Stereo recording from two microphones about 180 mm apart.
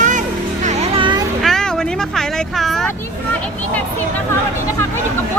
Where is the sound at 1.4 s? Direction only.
Centre (ahead or behind).